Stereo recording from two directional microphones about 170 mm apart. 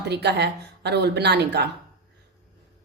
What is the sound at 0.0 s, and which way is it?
A woman's voice, 80° right.